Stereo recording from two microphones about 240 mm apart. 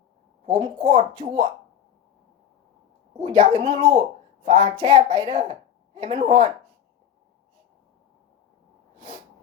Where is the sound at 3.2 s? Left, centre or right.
Right.